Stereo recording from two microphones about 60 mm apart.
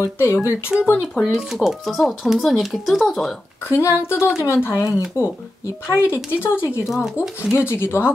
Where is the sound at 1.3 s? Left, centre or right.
Centre.